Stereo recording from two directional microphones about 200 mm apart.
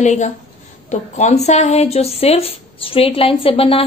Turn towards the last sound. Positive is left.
turn(degrees=30)  # may be behind; listen again after turning